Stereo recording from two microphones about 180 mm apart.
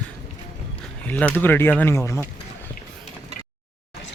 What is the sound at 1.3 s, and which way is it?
Speech, 10° left (ahead or behind).